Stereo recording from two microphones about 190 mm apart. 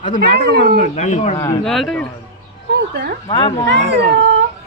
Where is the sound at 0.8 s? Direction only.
40° left (ahead or behind).